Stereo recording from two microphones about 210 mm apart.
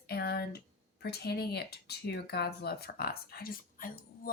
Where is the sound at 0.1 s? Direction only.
50° left (ahead or behind).